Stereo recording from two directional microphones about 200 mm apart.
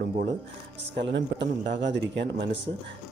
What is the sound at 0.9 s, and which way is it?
Speech, 60° right (ahead or behind).